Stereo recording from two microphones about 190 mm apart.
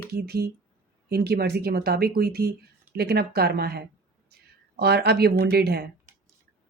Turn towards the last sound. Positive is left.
turn(degrees=-55)  # may be behind; listen again after turning